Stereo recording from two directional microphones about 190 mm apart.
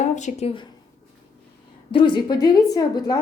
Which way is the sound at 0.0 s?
40° left (ahead or behind).